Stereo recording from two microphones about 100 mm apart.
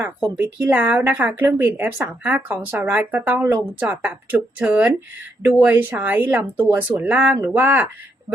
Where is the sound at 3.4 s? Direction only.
30° right (ahead or behind).